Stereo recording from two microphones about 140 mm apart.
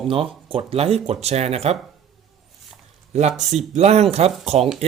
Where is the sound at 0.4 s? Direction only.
40° right (ahead or behind).